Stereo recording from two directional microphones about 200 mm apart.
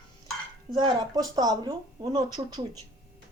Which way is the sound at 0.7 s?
20° right (ahead or behind).